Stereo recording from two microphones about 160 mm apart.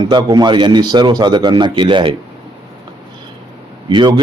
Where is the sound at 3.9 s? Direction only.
25° right (ahead or behind).